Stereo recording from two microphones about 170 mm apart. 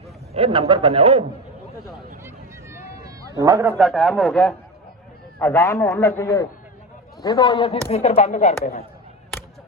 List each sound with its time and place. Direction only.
0.3 s a man's voice: 35° right (ahead or behind)
3.2 s a man's voice: 20° right (ahead or behind)
3.8 s speech: centre (ahead or behind)
5.4 s a man's voice: 15° left (ahead or behind); by 8.5 s 40° left (ahead or behind)